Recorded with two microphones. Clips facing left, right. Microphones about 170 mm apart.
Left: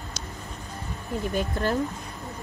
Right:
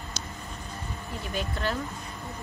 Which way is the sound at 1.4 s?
45° left (ahead or behind).